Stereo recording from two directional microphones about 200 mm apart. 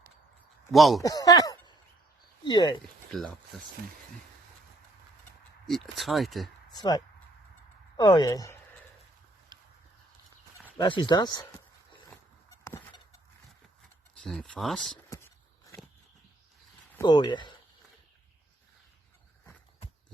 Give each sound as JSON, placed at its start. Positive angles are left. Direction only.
{"t": 0.7, "sound": "speech", "side_deg": 0}
{"t": 1.0, "sound": "speech", "side_deg": 20}
{"t": 3.1, "sound": "speech", "side_deg": 0}
{"t": 5.6, "sound": "speech", "side_deg": 0}
{"t": 6.7, "sound": "speech", "side_deg": 20}
{"t": 9.5, "sound": "horse", "side_deg": -20}
{"t": 10.8, "sound": "speech", "side_deg": 25}
{"t": 11.9, "sound": "a sound", "side_deg": 25}
{"t": 14.2, "sound": "speech", "side_deg": 5}
{"t": 15.1, "sound": "a sound", "side_deg": 15}
{"t": 16.9, "sound": "speech", "side_deg": 20}